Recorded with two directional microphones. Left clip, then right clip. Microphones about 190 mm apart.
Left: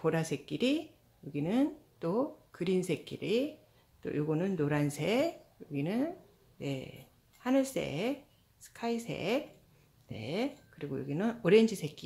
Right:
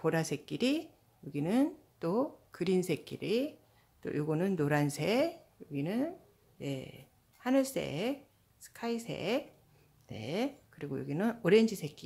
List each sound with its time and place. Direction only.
0.0 s speech: 15° right (ahead or behind)